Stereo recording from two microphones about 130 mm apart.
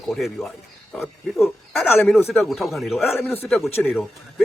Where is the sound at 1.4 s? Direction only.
Centre (ahead or behind).